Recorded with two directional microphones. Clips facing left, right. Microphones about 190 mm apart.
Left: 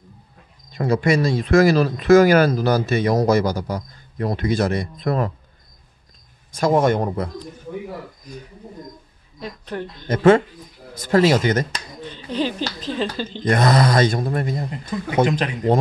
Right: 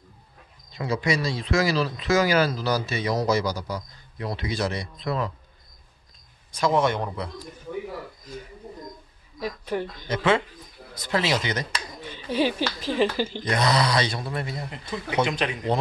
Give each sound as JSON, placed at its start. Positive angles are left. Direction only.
{"t": 0.7, "sound": "speech", "side_deg": 50}
{"t": 6.5, "sound": "speech", "side_deg": 45}
{"t": 8.3, "sound": "speech", "side_deg": 15}
{"t": 9.4, "sound": "speech", "side_deg": -10}
{"t": 10.0, "sound": "speech", "side_deg": 50}
{"t": 12.0, "sound": "a sound", "side_deg": -10}
{"t": 12.8, "sound": "speech", "side_deg": -10}
{"t": 13.5, "sound": "speech", "side_deg": 50}